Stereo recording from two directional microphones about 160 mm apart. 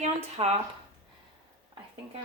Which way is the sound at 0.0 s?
40° right (ahead or behind).